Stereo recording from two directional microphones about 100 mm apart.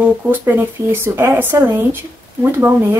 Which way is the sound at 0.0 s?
20° right (ahead or behind).